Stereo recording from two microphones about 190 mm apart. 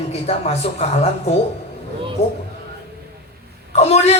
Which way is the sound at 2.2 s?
35° left (ahead or behind).